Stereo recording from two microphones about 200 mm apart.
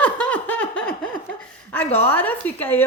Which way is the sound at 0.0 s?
10° left (ahead or behind).